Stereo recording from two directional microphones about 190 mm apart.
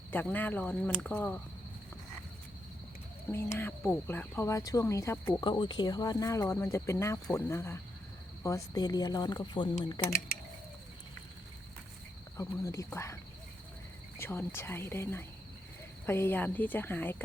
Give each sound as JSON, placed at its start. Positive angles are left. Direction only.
{"t": 0.1, "sound": "speech", "side_deg": 10}
{"t": 3.3, "sound": "speech", "side_deg": 10}
{"t": 5.4, "sound": "speech", "side_deg": 25}
{"t": 12.4, "sound": "speech", "side_deg": 15}
{"t": 14.2, "sound": "speech", "side_deg": 10}